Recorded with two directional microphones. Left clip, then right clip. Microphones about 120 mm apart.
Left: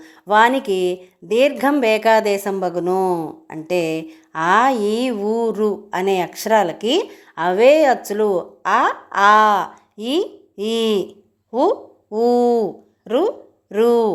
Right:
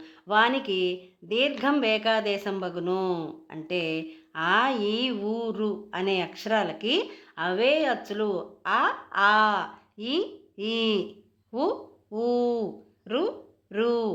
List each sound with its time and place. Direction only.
0.0 s speech: 45° left (ahead or behind)
2.8 s speech: 25° left (ahead or behind)
3.7 s speech: 45° left (ahead or behind)